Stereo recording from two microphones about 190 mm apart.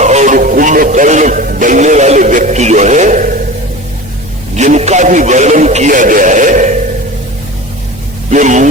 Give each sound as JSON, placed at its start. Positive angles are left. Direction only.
{"t": 0.0, "sound": "music", "side_deg": -35}
{"t": 4.5, "sound": "music", "side_deg": -35}
{"t": 8.3, "sound": "music", "side_deg": -40}